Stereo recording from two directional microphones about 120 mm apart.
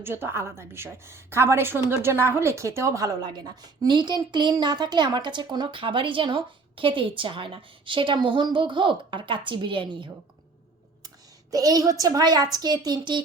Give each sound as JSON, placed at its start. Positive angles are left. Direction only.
{"t": 0.0, "sound": "a woman's voice", "side_deg": -20}
{"t": 11.5, "sound": "a woman's voice", "side_deg": -30}